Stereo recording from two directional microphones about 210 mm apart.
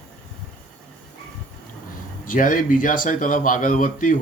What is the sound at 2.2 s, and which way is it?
A man's voice, 40° left (ahead or behind).